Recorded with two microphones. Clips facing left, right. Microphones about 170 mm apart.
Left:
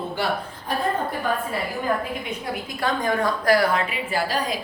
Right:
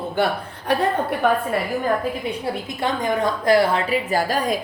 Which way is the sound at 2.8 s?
20° right (ahead or behind).